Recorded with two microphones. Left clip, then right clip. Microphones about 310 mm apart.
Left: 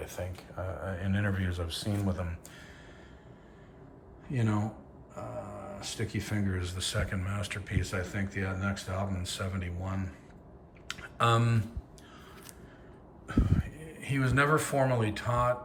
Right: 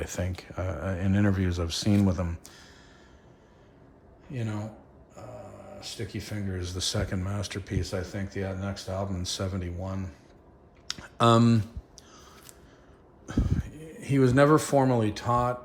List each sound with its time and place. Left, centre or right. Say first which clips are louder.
0.0 s speech: right 5 dB; right
4.3 s a man's voice: left 3 dB; centre
10.8 s a sound: right 5 dB; centre
13.2 s speech: even; centre